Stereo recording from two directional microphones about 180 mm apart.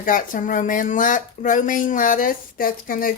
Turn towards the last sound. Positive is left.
turn(degrees=50)  # may be behind; listen again after turning